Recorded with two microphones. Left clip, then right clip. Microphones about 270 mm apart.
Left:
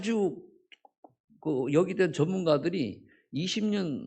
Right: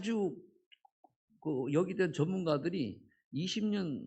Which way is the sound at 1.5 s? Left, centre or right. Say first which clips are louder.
Left 7 dB; right.